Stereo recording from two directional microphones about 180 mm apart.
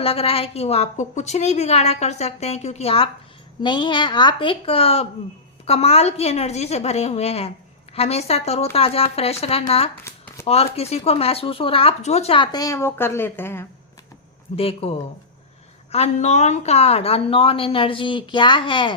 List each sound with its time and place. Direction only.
0.0 s a woman's voice: 30° left (ahead or behind)
10.0 s shuffling cards: 15° left (ahead or behind)
10.4 s a woman's voice: 35° left (ahead or behind); by 13.7 s 15° left (ahead or behind)
14.5 s a woman's voice: 35° left (ahead or behind)